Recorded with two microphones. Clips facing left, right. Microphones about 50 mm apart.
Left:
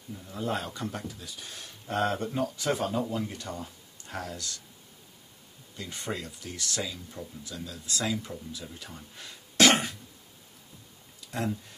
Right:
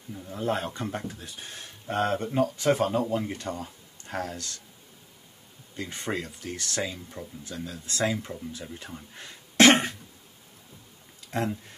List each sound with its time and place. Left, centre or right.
0.1 s speech: right
1.9 s speech: centre
2.4 s speech: right
5.8 s speech: right
9.1 s cough: right
11.2 s speech: right